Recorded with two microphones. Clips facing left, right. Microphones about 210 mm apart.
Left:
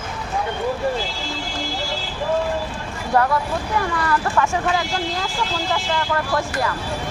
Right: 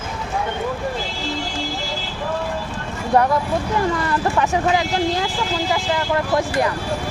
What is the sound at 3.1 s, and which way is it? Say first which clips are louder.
Speech: right 2 dB; 20° right (ahead or behind).